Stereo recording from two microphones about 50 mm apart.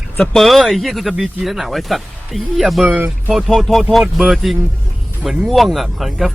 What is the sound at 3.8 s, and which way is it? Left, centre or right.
Speech, centre.